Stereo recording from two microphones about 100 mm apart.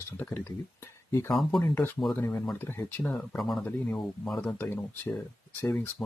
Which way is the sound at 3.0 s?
5° left (ahead or behind).